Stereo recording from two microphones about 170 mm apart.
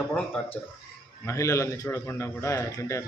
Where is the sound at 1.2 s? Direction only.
15° left (ahead or behind).